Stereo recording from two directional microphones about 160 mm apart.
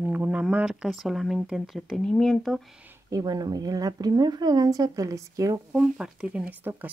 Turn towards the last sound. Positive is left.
turn(degrees=-10)  # may be behind; listen again after turning